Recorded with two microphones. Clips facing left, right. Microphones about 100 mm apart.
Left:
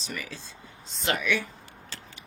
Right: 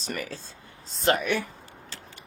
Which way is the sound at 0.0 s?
45° right (ahead or behind).